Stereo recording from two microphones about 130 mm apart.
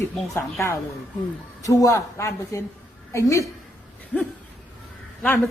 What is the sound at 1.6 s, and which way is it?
A woman's voice, 25° left (ahead or behind).